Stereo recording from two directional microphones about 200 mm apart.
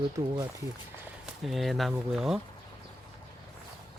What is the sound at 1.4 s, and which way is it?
Speech, centre (ahead or behind).